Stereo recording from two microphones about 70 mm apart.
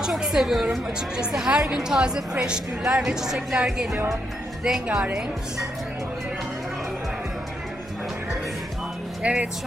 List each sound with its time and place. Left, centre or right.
0.0 s a woman's voice: centre
4.6 s a woman's voice: centre
9.2 s speech: centre